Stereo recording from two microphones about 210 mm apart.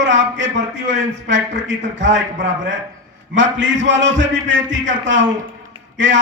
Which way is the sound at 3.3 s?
60° right (ahead or behind).